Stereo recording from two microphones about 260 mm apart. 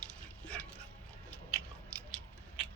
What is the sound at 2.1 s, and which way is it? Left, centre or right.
Biting, centre.